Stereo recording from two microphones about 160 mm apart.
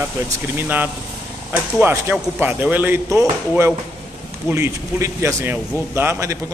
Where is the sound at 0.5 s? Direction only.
10° right (ahead or behind).